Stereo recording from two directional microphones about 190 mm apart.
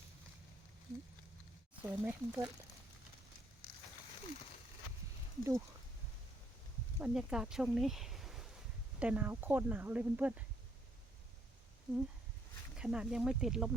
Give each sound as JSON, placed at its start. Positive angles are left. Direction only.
{"t": 1.8, "sound": "speech", "side_deg": -10}
{"t": 5.4, "sound": "speech", "side_deg": -15}
{"t": 7.0, "sound": "speech", "side_deg": -5}
{"t": 12.7, "sound": "speech", "side_deg": -5}